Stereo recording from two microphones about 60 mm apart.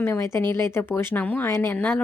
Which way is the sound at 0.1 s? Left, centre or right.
Left.